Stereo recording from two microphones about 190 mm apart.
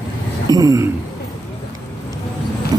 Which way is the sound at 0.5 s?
20° right (ahead or behind).